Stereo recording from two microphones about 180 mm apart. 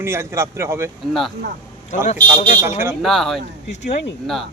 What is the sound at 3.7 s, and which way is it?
Speech, 75° left (ahead or behind).